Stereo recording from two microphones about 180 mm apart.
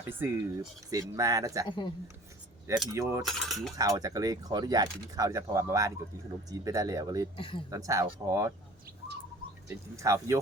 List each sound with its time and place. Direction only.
0.1 s speech: 10° right (ahead or behind)
1.6 s speech: 25° left (ahead or behind)
2.9 s speech: 15° right (ahead or behind)
3.2 s cutlery: centre (ahead or behind)
3.8 s speech: 20° right (ahead or behind)
7.3 s speech: 30° left (ahead or behind)
7.7 s speech: 20° right (ahead or behind)
9.6 s speech: 15° right (ahead or behind)